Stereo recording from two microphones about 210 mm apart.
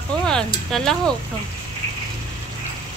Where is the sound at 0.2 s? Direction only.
5° left (ahead or behind).